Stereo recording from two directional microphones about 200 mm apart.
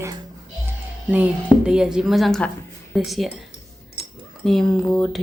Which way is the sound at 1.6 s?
5° right (ahead or behind).